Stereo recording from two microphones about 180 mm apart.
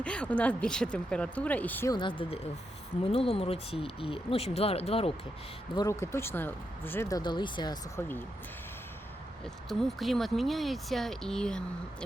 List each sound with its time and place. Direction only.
0.0 s speech: 5° left (ahead or behind)
1.9 s speech: 25° left (ahead or behind)
5.7 s speech: 20° left (ahead or behind)
9.6 s speech: centre (ahead or behind)